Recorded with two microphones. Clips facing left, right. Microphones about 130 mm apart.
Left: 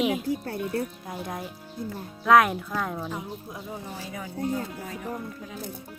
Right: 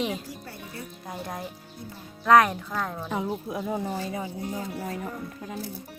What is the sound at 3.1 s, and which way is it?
Speech, 85° right.